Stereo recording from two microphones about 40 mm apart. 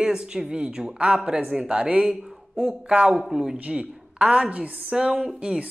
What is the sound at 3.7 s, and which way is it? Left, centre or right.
Speech, right.